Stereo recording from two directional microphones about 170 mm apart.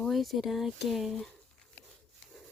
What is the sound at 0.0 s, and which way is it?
Speech, centre (ahead or behind).